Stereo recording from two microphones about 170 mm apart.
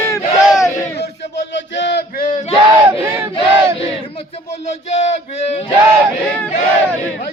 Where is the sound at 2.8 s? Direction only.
15° right (ahead or behind).